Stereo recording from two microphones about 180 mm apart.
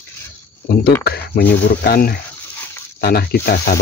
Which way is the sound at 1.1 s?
60° left (ahead or behind).